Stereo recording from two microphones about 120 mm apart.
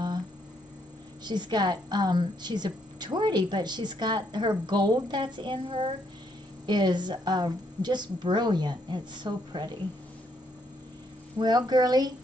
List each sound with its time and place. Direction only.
1.2 s a woman's voice: 35° right (ahead or behind)
11.3 s a woman's voice: 35° right (ahead or behind)